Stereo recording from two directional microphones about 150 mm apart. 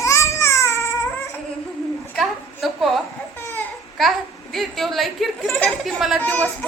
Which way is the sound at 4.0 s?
Centre (ahead or behind).